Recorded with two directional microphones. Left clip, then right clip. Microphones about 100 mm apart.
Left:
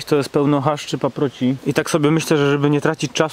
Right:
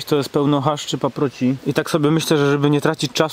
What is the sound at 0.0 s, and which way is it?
Speech, 5° right (ahead or behind).